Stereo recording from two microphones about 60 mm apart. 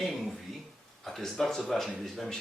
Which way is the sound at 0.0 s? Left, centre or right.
Centre.